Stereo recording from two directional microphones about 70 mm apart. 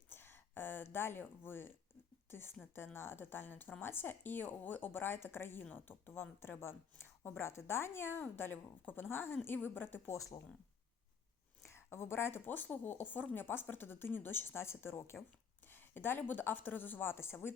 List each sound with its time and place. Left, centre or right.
0.1 s a sound: left
2.3 s a woman's voice: left
10.1 s speech: left
11.6 s a woman's voice: left